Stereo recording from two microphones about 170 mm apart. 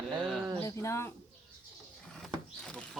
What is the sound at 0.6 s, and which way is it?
Speech, 20° left (ahead or behind).